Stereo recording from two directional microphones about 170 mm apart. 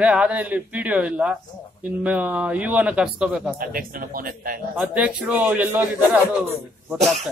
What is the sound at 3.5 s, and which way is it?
A man's voice, 55° right (ahead or behind).